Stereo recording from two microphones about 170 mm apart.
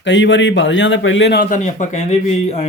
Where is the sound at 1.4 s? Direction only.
45° left (ahead or behind).